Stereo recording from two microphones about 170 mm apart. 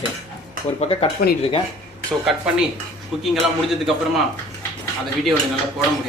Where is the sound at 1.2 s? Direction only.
65° left (ahead or behind).